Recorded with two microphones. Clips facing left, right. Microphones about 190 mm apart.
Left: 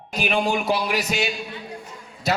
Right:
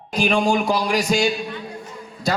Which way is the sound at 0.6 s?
40° right (ahead or behind).